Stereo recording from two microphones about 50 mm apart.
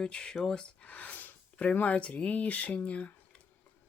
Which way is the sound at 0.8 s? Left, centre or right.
Left.